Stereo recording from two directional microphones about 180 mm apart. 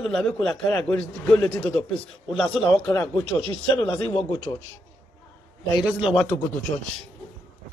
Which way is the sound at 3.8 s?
20° left (ahead or behind).